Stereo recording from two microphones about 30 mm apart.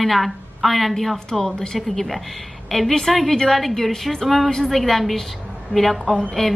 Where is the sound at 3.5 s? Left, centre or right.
Centre.